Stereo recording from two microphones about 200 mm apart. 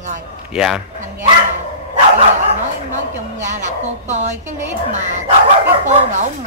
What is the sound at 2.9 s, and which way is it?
Speech, 40° right (ahead or behind).